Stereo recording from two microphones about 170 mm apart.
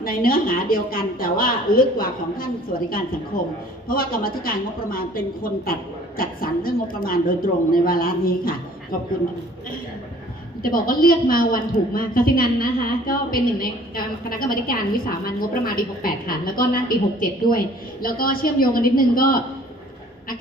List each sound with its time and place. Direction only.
0.0 s a woman's voice: 60° left (ahead or behind)
10.6 s a woman's voice: 55° left (ahead or behind)